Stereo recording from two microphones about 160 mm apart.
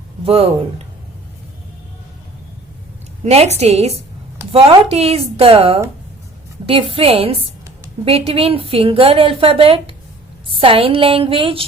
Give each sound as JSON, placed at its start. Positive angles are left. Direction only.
{"t": 0.3, "sound": "a woman's voice", "side_deg": -35}
{"t": 3.2, "sound": "a woman's voice", "side_deg": -40}